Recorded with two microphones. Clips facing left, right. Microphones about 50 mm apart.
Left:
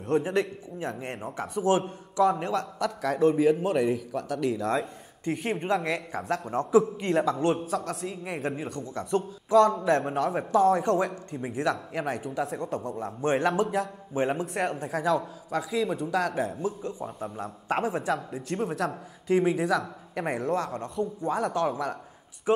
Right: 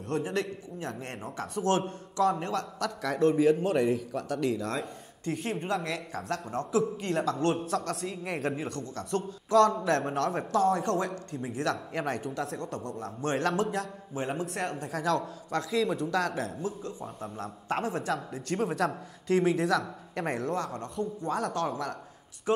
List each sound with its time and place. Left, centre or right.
0.0 s a man's voice: left
7.5 s speech: centre
8.8 s a man's voice: centre
11.9 s a man's voice: centre
14.1 s a woman's voice: left
14.4 s a man's voice: centre
18.1 s speech: centre
21.0 s a man's voice: centre